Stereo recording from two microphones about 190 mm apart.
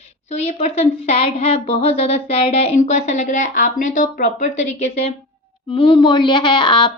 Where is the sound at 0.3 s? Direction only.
35° left (ahead or behind).